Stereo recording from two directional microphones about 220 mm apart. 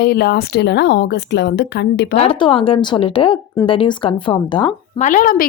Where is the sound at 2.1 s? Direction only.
25° left (ahead or behind).